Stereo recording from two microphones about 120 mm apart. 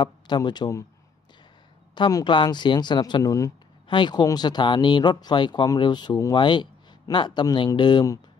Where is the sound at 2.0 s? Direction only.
35° left (ahead or behind).